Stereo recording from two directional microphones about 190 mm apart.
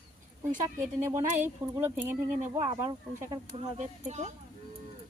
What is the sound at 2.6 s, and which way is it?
A woman's voice, 30° right (ahead or behind).